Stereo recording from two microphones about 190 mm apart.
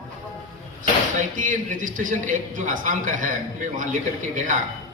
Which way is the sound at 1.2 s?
45° right (ahead or behind).